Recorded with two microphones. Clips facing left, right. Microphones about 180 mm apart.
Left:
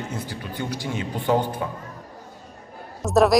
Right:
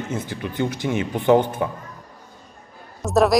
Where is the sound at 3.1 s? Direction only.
Centre (ahead or behind).